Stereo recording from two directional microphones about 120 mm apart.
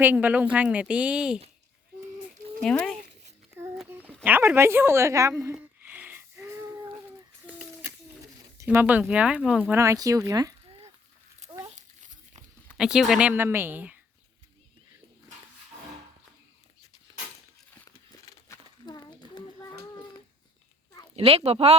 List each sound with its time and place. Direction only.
0.0 s speech: 15° right (ahead or behind)
2.6 s speech: 5° left (ahead or behind)
4.2 s speech: 15° right (ahead or behind)
5.5 s wheeze: 15° right (ahead or behind)
8.7 s speech: 15° right (ahead or behind)
9.7 s speech: 25° right (ahead or behind)
10.7 s a sound: 55° right (ahead or behind)
11.7 s a sound: 85° right
12.7 s speech: 5° right (ahead or behind)
18.3 s a sound: 25° left (ahead or behind)
18.9 s a sound: 35° left (ahead or behind)
21.2 s speech: 55° right (ahead or behind)